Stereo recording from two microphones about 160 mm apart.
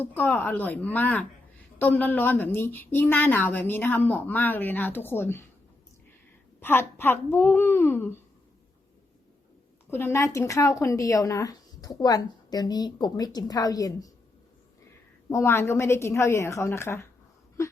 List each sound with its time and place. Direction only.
0.0 s a woman's voice: 10° left (ahead or behind)
6.6 s a woman's voice: 15° left (ahead or behind)
9.9 s a woman's voice: 15° left (ahead or behind)
15.3 s a woman's voice: 15° left (ahead or behind)